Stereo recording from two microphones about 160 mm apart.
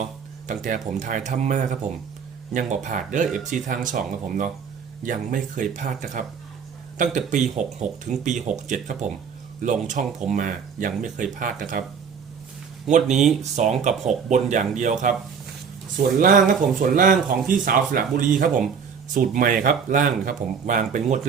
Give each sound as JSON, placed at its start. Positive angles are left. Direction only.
{"t": 0.0, "sound": "speech", "side_deg": -50}
{"t": 12.9, "sound": "speech", "side_deg": -45}
{"t": 16.2, "sound": "speech", "side_deg": -55}